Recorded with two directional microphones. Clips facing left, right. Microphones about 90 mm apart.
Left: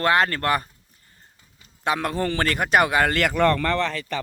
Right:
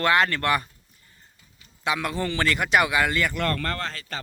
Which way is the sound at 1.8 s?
45° left (ahead or behind).